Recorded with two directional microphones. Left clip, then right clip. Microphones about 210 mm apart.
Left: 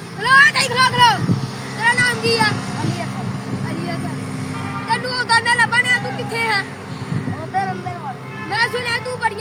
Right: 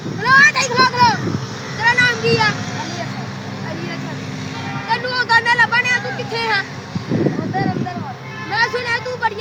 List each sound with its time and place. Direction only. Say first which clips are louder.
0.2 s vehicle: even; 25° left (ahead or behind)
1.8 s vehicle: right 2 dB; 30° left (ahead or behind)
4.9 s vehicle: right 1 dB; 30° left (ahead or behind)
8.5 s vehicle: right 1 dB; 30° left (ahead or behind)